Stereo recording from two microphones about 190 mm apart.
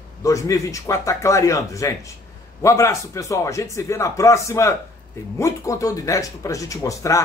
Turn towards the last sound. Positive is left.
turn(degrees=15)  # may be behind; listen again after turning